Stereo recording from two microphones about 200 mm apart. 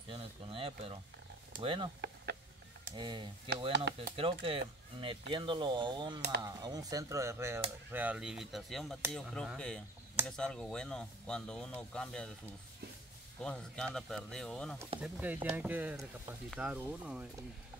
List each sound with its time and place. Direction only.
0.1 s speech: 25° right (ahead or behind)
3.0 s speech: 25° right (ahead or behind)
3.7 s speech: 60° right (ahead or behind)
4.2 s speech: 30° right (ahead or behind); by 12.3 s 5° left (ahead or behind)
13.4 s speech: 5° left (ahead or behind)
15.0 s speech: 10° right (ahead or behind)